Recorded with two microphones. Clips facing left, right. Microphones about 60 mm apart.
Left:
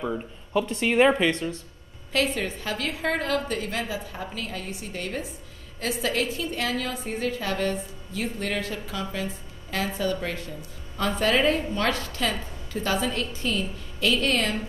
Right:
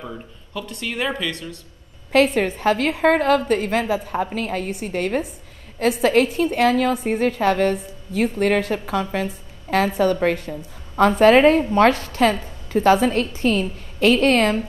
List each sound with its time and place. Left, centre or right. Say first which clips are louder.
0.0 s speech: left 4 dB; left
2.1 s a woman's voice: right 9 dB; right